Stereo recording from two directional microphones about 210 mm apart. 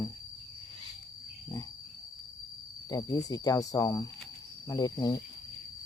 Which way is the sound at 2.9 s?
15° left (ahead or behind).